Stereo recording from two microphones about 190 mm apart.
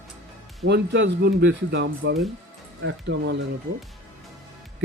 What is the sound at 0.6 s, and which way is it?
Speech, 65° right (ahead or behind).